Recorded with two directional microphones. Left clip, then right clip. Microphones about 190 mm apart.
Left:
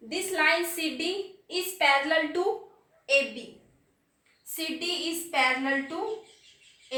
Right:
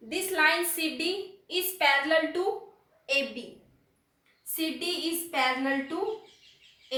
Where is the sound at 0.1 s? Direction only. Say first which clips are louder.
Even; 15° left (ahead or behind).